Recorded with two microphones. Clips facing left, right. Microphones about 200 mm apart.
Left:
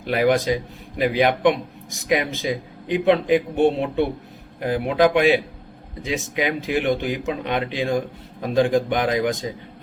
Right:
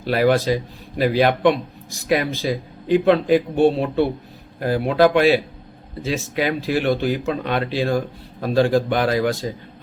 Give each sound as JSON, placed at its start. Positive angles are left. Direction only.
{"t": 0.0, "sound": "speech", "side_deg": 15}